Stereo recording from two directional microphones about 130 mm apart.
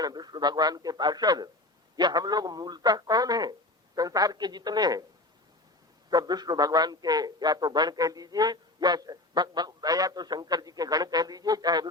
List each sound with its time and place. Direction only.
0.0 s a man's voice: 30° right (ahead or behind)
6.1 s a man's voice: 30° right (ahead or behind)